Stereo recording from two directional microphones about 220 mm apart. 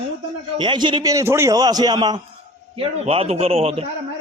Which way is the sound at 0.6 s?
20° right (ahead or behind).